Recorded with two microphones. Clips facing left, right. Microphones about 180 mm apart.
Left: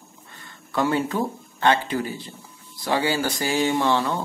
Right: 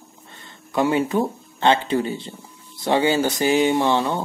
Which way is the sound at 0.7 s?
15° right (ahead or behind).